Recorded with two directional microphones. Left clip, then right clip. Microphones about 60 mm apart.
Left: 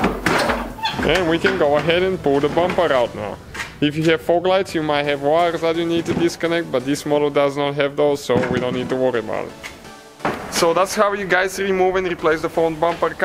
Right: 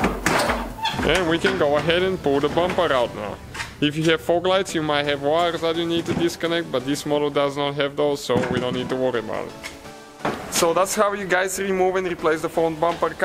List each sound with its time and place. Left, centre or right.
0.3 s speech: centre
5.4 s speech: centre
10.6 s speech: centre
12.2 s speech: centre